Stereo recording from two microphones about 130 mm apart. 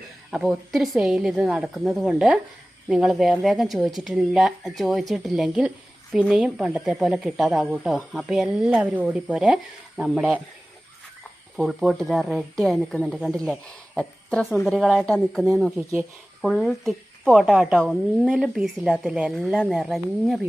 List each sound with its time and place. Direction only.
0.3 s speech: 5° right (ahead or behind)
11.5 s speech: centre (ahead or behind)